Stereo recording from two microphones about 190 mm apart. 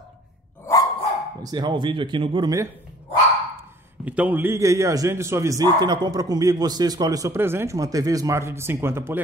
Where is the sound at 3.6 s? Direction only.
10° right (ahead or behind).